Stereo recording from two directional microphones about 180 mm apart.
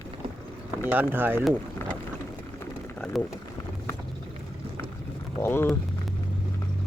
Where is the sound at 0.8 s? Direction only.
10° right (ahead or behind).